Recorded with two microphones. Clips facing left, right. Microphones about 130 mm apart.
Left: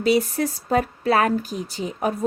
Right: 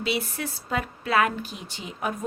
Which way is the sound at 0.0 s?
40° left (ahead or behind).